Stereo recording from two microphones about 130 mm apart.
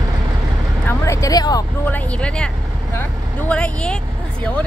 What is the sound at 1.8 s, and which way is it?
Speech, 10° left (ahead or behind).